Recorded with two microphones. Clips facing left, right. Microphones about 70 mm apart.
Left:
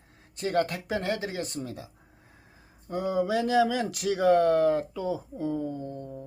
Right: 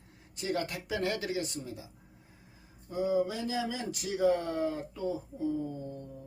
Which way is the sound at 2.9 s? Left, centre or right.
Left.